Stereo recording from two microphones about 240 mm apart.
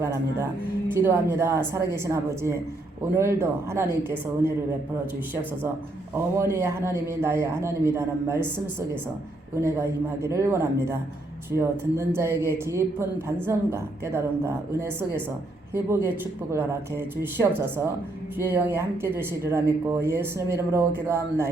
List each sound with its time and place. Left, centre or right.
0.0 s speech: centre
6.1 s speech: centre
9.6 s speech: centre